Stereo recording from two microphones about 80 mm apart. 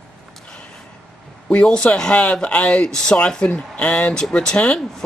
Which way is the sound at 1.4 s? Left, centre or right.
Centre.